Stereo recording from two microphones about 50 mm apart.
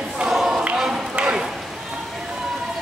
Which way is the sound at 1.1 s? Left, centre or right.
Centre.